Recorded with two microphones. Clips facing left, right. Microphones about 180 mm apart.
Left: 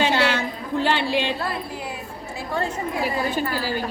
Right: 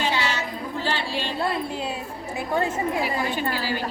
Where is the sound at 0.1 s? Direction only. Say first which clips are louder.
Left 5 dB; 55° left (ahead or behind).